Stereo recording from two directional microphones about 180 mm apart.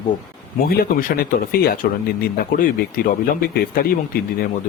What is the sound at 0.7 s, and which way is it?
Speech, 55° left (ahead or behind).